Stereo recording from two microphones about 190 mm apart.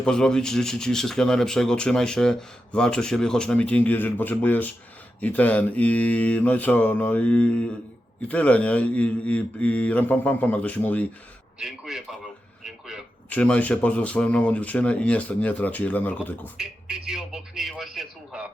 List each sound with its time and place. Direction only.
0.0 s a man's voice: 5° left (ahead or behind)
13.3 s speech: 5° left (ahead or behind)
16.6 s speech: 5° right (ahead or behind)